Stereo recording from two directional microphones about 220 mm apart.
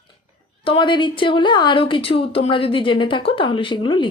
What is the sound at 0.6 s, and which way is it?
A woman's voice, 25° left (ahead or behind).